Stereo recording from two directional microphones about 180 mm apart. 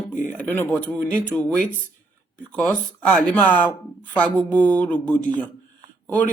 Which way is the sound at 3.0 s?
5° left (ahead or behind).